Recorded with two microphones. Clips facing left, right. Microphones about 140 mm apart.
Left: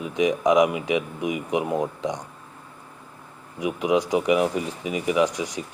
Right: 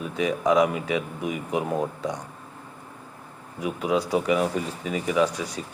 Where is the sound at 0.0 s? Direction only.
15° left (ahead or behind).